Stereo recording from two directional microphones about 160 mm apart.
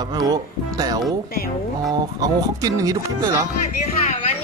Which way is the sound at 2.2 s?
25° right (ahead or behind).